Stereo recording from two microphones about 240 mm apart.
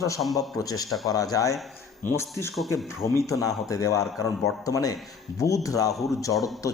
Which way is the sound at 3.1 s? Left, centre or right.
Centre.